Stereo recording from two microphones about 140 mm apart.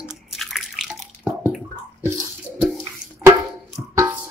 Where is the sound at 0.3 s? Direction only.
Centre (ahead or behind).